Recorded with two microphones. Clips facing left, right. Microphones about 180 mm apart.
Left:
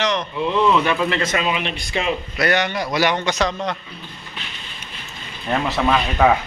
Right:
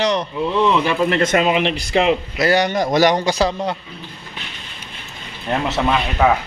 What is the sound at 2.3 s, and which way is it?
A man's voice, 30° right (ahead or behind).